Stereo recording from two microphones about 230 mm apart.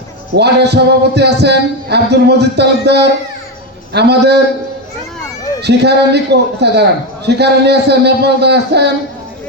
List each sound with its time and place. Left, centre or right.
0.3 s speech: right
5.6 s speech: right